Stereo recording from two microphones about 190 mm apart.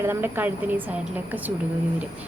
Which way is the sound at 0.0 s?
10° right (ahead or behind).